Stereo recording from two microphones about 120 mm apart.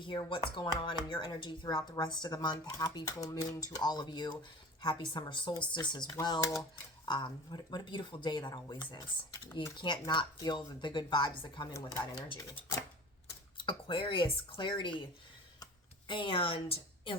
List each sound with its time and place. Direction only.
0.3 s speech: 45° left (ahead or behind); by 7.1 s 25° left (ahead or behind)
7.1 s speech: 35° left (ahead or behind)
13.6 s speech: 45° left (ahead or behind)
15.6 s a sound: 45° left (ahead or behind)